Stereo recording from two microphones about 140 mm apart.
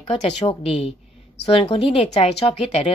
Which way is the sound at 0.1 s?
50° left (ahead or behind).